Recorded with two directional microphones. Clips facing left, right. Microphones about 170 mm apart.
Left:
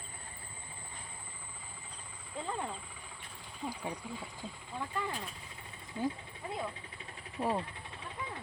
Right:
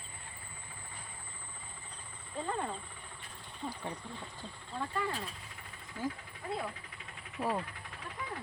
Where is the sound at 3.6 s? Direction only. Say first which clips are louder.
Left 1 dB; 10° left (ahead or behind).